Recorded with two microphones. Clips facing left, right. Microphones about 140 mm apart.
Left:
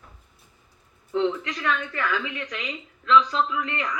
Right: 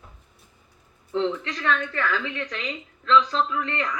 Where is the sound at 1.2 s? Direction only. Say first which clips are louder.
Left 1 dB; 30° right (ahead or behind).